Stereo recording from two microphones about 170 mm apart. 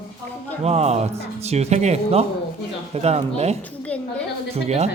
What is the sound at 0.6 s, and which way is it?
Speech, 40° right (ahead or behind).